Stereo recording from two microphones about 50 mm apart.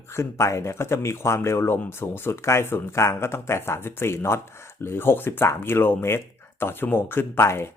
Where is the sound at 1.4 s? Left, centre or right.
Left.